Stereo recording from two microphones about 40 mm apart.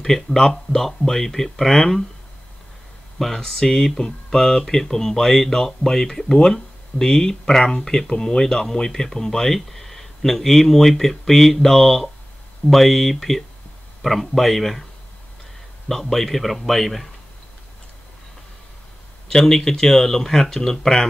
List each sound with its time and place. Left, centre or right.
0.0 s speech: centre
3.2 s a man's voice: centre
15.9 s a man's voice: centre
19.2 s speech: centre